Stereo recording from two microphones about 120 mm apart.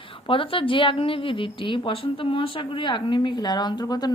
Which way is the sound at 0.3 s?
45° left (ahead or behind).